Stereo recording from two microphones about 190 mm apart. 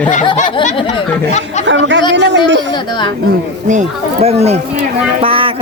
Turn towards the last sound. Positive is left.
turn(degrees=-30)  # may be behind; listen again after turning